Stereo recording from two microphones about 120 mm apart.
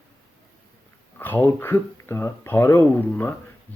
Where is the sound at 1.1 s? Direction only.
15° left (ahead or behind).